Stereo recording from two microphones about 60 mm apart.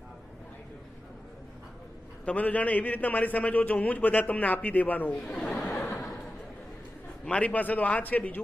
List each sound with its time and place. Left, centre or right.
2.2 s a man's voice: left
5.3 s a sound: centre
7.2 s a man's voice: left